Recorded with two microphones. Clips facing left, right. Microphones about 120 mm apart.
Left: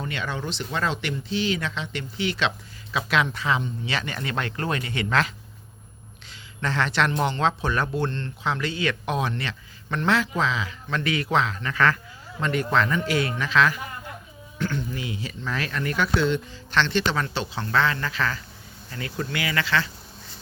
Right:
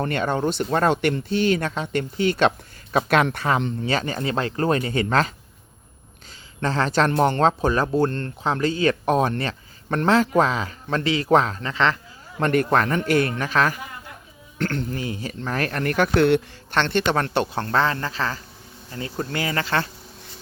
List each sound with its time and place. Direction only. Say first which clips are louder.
0.0 s speech: right 8 dB; 50° right (ahead or behind)
3.8 s speech: right 6 dB; 40° right (ahead or behind)
6.6 s speech: right 3 dB; 35° right (ahead or behind)
11.0 s speech: right 2 dB; 30° right (ahead or behind)
11.3 s speech: right 7 dB; 45° right (ahead or behind)
11.6 s speech: right 1 dB; 25° right (ahead or behind)
12.4 s speech: right 4 dB; 50° right (ahead or behind)
14.6 s speech: right 3 dB; 60° right (ahead or behind)
14.9 s speech: right 3 dB; 40° right (ahead or behind)
17.7 s speech: right 2 dB; 40° right (ahead or behind)